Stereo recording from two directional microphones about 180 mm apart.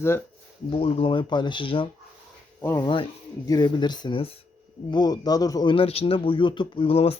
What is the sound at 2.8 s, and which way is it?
A man's voice, 25° left (ahead or behind).